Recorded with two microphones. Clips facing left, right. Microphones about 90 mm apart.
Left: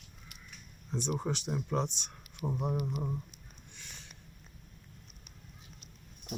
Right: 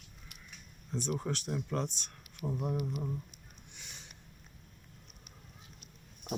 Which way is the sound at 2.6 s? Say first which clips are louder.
Left 1 dB; 25° left (ahead or behind).